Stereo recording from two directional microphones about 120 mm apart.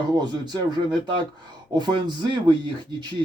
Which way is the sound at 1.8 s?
35° right (ahead or behind).